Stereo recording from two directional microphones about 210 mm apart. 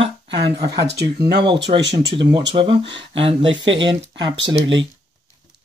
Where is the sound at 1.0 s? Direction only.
20° right (ahead or behind).